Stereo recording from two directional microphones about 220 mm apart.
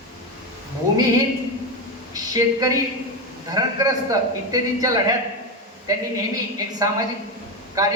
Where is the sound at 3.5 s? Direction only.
15° right (ahead or behind).